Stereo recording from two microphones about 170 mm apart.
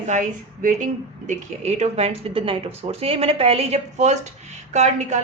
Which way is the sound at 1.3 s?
40° right (ahead or behind).